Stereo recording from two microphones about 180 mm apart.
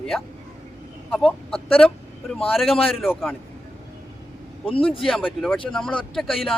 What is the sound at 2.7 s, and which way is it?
Speech, 30° left (ahead or behind).